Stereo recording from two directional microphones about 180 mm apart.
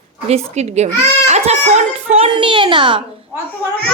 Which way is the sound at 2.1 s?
30° right (ahead or behind).